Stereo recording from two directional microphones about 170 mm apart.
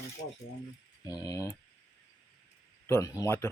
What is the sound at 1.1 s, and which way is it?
Speech, 20° left (ahead or behind).